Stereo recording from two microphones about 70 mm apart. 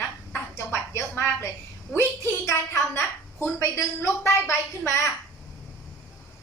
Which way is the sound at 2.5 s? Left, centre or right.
Left.